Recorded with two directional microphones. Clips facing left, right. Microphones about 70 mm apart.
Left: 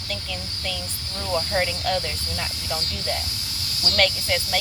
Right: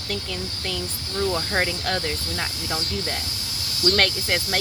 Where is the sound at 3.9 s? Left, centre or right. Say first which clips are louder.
Left 2 dB; right.